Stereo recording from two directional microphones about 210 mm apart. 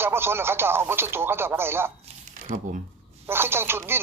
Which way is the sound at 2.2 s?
40° right (ahead or behind).